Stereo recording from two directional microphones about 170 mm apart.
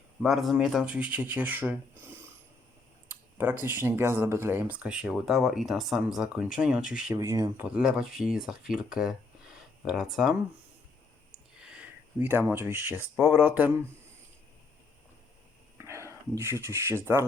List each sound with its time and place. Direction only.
0.2 s speech: centre (ahead or behind)
7.2 s speech: 20° right (ahead or behind)
7.6 s speech: 5° right (ahead or behind)
11.3 s a sound: 5° right (ahead or behind)
12.2 s speech: 15° right (ahead or behind)
15.8 s speech: 15° right (ahead or behind)